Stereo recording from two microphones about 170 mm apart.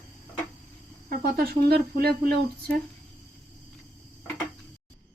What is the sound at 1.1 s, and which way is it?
Speech, 60° right (ahead or behind).